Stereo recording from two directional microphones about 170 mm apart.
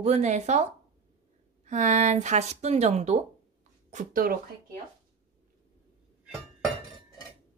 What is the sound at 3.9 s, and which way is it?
Speech, 50° right (ahead or behind).